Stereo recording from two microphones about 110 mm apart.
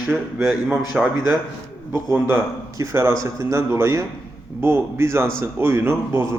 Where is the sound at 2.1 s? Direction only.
20° right (ahead or behind).